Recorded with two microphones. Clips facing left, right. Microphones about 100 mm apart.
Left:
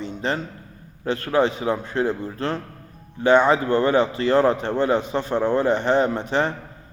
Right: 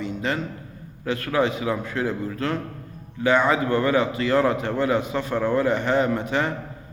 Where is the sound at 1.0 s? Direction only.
30° left (ahead or behind).